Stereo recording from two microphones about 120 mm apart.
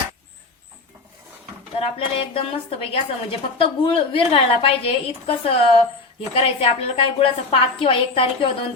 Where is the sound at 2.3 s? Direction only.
55° left (ahead or behind).